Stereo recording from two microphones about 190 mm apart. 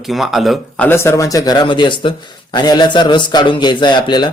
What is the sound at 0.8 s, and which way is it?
A man's voice, 15° left (ahead or behind).